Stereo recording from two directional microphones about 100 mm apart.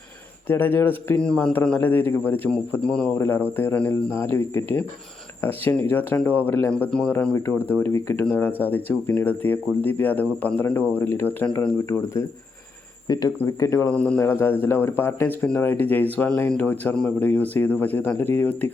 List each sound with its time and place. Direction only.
0.4 s speech: 20° left (ahead or behind)
2.7 s speech: 10° left (ahead or behind)
3.2 s speech: 20° left (ahead or behind)
7.9 s speech: 30° left (ahead or behind)
8.2 s speech: 20° left (ahead or behind)
13.1 s speech: 40° left (ahead or behind)
13.4 s speech: 30° left (ahead or behind)
13.9 s speech: 10° left (ahead or behind)
14.2 s speech: 20° left (ahead or behind)